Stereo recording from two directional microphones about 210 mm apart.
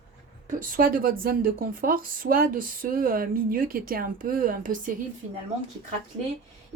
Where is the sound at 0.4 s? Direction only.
40° right (ahead or behind).